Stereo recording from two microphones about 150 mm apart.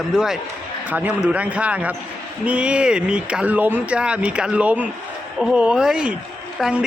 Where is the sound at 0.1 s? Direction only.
5° right (ahead or behind).